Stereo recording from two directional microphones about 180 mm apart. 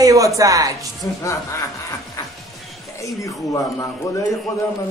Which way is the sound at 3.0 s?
15° left (ahead or behind).